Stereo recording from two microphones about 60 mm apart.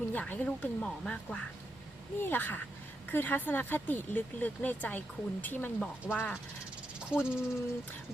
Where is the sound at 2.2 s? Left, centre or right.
Left.